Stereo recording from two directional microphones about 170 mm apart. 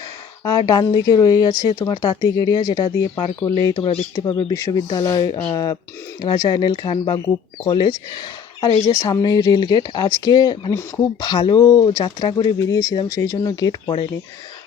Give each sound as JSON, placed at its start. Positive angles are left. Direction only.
{"t": 0.4, "sound": "speech", "side_deg": 20}